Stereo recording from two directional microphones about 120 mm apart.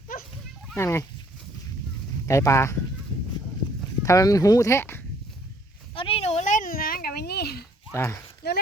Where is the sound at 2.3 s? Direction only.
25° left (ahead or behind).